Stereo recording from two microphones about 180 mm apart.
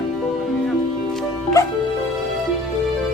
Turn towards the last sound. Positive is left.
turn(degrees=15)  # may be behind; listen again after turning